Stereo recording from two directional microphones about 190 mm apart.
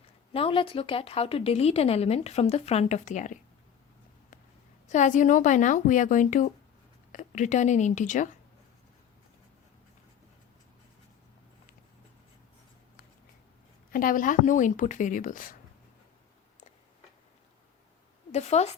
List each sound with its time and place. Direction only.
0.3 s speech: 30° left (ahead or behind)
4.9 s speech: 40° left (ahead or behind)
13.9 s speech: 45° left (ahead or behind)
18.3 s a woman's voice: 35° left (ahead or behind)